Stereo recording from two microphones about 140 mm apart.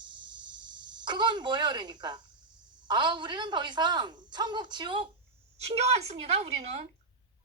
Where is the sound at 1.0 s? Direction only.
35° right (ahead or behind).